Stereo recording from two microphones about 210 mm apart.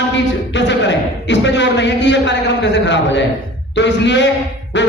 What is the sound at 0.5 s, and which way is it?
A man's voice, 55° left (ahead or behind).